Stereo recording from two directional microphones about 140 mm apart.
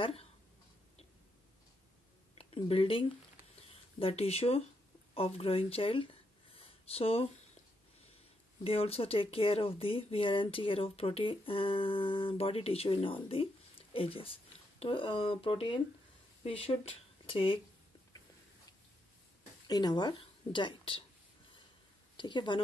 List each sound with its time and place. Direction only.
0.0 s speech: 45° left (ahead or behind)
2.3 s speech: 40° left (ahead or behind)
6.5 s a sound: 45° left (ahead or behind)
8.6 s speech: 45° left (ahead or behind)
19.7 s a woman's voice: 30° left (ahead or behind)
22.1 s a woman's voice: 35° left (ahead or behind)